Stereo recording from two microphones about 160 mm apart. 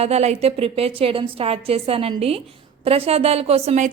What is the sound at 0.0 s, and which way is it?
A woman's voice, 40° right (ahead or behind).